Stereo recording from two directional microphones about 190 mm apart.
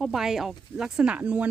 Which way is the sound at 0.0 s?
Centre (ahead or behind).